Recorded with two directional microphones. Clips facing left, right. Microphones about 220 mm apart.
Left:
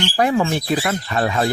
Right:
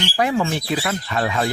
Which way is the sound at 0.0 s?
45° left (ahead or behind).